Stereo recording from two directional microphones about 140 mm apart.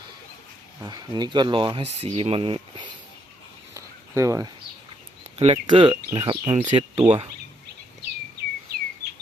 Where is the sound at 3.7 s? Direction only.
20° right (ahead or behind).